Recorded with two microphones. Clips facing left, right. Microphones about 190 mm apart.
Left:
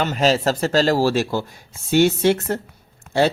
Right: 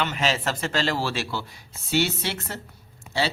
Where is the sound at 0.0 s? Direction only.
40° left (ahead or behind).